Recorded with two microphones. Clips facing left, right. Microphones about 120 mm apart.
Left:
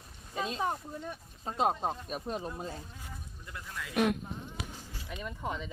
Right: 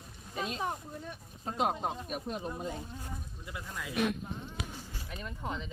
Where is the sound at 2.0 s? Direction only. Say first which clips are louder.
Left 1 dB; 35° left (ahead or behind).